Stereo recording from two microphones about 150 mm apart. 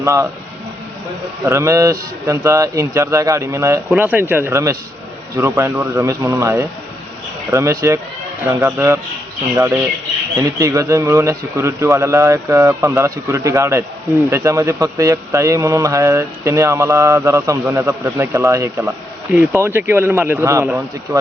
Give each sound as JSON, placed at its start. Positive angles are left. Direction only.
{"t": 0.0, "sound": "speech", "side_deg": -20}
{"t": 1.5, "sound": "speech", "side_deg": -20}